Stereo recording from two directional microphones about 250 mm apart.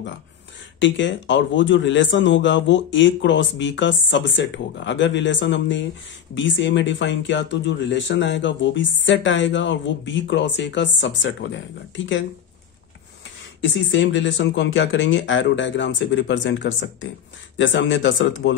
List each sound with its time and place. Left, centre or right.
0.7 s a man's voice: left
13.9 s a man's voice: left